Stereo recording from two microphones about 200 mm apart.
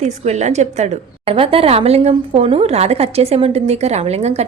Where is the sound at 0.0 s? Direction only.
35° right (ahead or behind).